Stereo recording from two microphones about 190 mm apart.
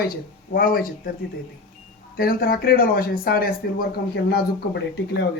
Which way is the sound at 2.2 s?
50° left (ahead or behind).